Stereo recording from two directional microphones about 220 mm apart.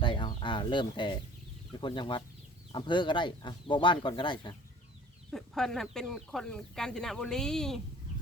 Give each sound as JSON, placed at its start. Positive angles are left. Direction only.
{"t": 0.0, "sound": "a sound", "side_deg": 20}
{"t": 1.7, "sound": "speech", "side_deg": 20}
{"t": 5.3, "sound": "speech", "side_deg": 0}